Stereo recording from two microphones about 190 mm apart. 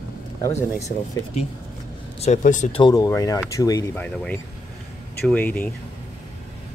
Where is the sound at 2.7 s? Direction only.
20° left (ahead or behind).